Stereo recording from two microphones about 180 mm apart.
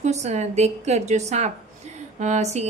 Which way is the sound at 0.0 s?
40° right (ahead or behind).